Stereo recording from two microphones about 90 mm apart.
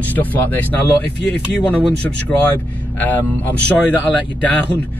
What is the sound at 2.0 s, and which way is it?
Speech, 20° left (ahead or behind).